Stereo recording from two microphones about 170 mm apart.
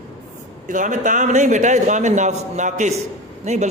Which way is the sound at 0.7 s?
45° right (ahead or behind).